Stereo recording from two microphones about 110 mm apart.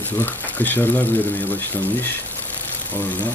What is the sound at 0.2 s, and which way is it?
Speech, 15° left (ahead or behind).